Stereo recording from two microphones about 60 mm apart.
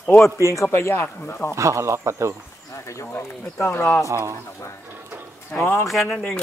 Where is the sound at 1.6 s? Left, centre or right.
Right.